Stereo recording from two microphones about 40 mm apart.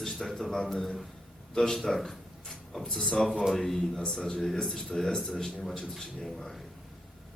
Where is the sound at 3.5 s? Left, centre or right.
Centre.